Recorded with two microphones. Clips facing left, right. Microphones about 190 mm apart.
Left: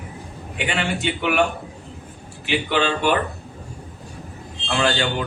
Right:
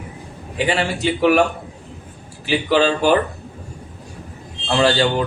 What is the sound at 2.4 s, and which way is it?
Speech, 35° right (ahead or behind).